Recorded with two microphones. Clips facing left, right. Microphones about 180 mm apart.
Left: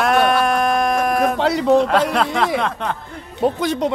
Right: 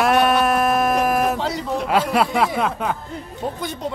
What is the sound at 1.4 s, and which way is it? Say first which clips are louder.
Speech: left 9 dB; 70° left (ahead or behind).